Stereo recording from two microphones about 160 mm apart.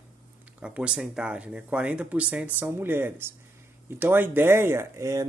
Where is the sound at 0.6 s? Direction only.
5° right (ahead or behind).